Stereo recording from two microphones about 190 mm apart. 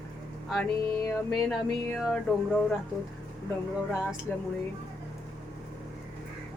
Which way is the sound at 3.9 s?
5° right (ahead or behind).